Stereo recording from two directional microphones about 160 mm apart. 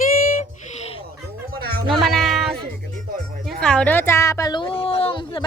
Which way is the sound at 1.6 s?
70° right (ahead or behind).